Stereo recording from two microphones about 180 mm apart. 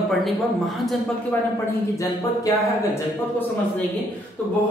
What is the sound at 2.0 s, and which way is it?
Speech, 15° left (ahead or behind).